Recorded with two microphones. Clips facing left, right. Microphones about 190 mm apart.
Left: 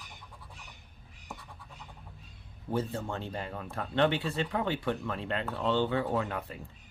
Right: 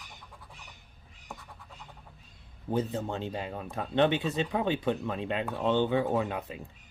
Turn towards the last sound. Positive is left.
turn(degrees=-15)  # may be behind; listen again after turning